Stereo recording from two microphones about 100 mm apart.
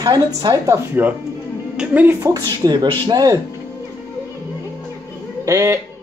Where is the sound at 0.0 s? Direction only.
40° right (ahead or behind).